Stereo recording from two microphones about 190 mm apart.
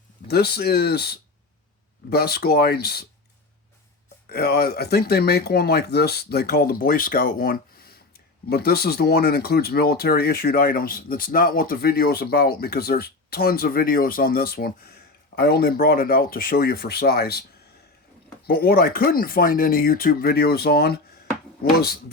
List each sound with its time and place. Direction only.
0.3 s speech: 60° left (ahead or behind)
4.3 s speech: 55° left (ahead or behind)
18.4 s speech: 55° left (ahead or behind)